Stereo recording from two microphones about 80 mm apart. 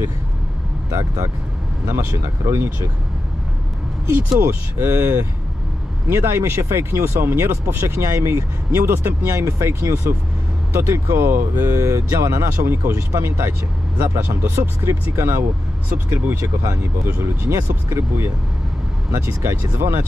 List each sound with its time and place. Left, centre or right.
0.8 s speech: right
1.9 s speech: right
4.1 s speech: right